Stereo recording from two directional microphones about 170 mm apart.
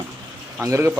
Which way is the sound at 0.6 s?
15° right (ahead or behind).